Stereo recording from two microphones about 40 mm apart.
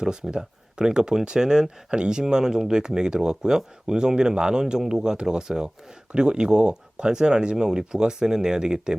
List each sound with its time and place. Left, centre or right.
0.0 s speech: centre